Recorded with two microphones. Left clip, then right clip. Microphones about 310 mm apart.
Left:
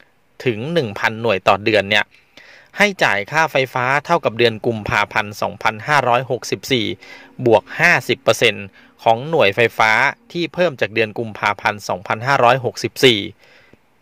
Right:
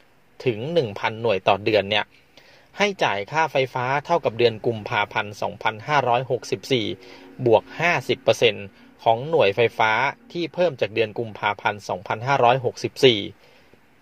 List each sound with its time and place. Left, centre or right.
0.4 s speech: left